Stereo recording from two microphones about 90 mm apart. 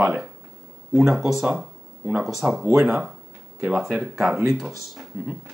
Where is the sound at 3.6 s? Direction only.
5° right (ahead or behind).